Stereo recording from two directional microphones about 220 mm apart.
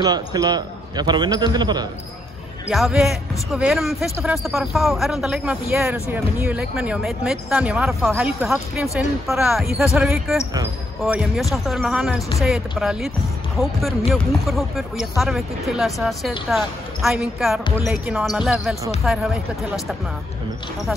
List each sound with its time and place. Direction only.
0.0 s a man's voice: 20° right (ahead or behind)
2.7 s speech: centre (ahead or behind)